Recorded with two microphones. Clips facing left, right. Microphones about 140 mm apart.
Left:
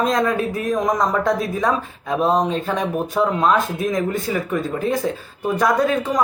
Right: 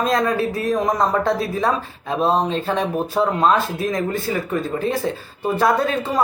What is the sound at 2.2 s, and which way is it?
Speech, 25° right (ahead or behind).